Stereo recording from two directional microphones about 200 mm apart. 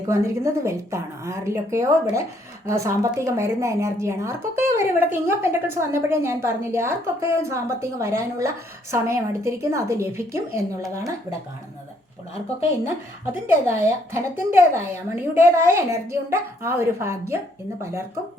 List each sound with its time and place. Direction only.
0.1 s a woman's voice: 15° right (ahead or behind)
13.5 s a woman's voice: 15° right (ahead or behind)